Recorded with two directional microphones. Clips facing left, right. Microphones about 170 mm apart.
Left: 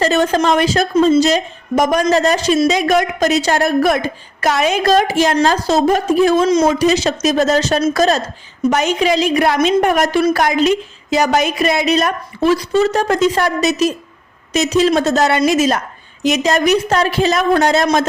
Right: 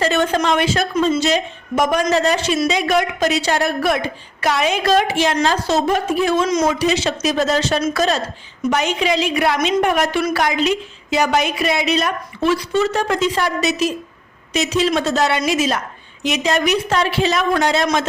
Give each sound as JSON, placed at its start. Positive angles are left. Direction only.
{"t": 0.0, "sound": "a woman's voice", "side_deg": 40}
{"t": 6.7, "sound": "a woman's voice", "side_deg": 40}